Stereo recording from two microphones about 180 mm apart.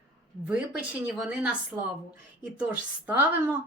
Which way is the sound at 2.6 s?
10° right (ahead or behind).